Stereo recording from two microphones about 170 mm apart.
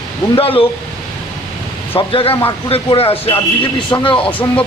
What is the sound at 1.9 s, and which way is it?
Speech, 35° left (ahead or behind).